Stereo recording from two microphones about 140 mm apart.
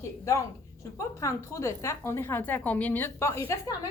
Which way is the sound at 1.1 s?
20° left (ahead or behind).